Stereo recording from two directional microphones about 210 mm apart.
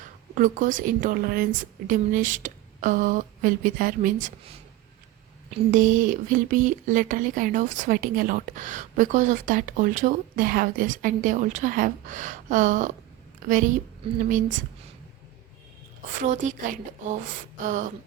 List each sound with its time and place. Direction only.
0.3 s speech: 40° right (ahead or behind)
5.5 s speech: 40° right (ahead or behind)
16.2 s speech: 35° right (ahead or behind)